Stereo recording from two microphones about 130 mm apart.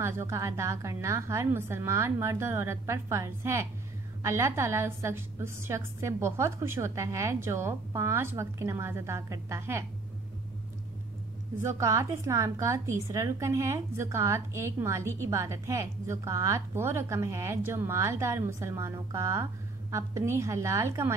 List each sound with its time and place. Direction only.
0.0 s a woman's voice: 20° right (ahead or behind)
11.6 s a woman's voice: 25° right (ahead or behind)